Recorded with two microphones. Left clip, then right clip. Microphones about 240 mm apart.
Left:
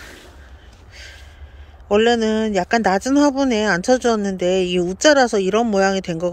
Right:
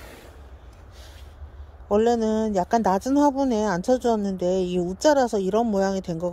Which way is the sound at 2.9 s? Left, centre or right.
Centre.